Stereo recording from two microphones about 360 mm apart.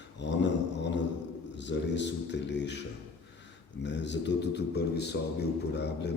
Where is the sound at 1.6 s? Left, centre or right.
Left.